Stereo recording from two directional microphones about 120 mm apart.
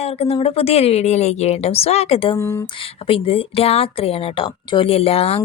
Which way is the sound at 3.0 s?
50° left (ahead or behind).